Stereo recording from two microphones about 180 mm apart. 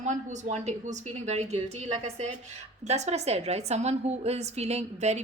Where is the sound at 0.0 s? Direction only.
40° right (ahead or behind).